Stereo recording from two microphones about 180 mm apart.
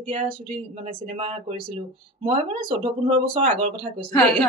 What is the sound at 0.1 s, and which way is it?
Speech, 30° right (ahead or behind).